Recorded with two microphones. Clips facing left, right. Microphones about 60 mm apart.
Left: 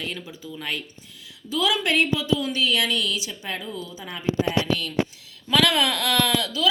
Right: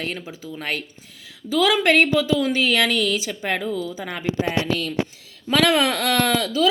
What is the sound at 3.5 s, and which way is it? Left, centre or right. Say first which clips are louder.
Speech: right 9 dB; right.